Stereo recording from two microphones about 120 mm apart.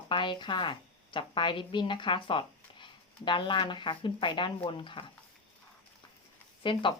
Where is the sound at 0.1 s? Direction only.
40° left (ahead or behind).